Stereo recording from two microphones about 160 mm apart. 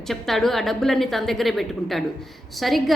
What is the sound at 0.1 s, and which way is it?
A woman's voice, centre (ahead or behind).